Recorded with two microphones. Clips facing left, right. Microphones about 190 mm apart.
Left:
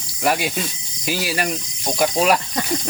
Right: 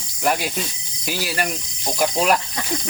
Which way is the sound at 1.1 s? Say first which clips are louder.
Left 2 dB; centre (ahead or behind).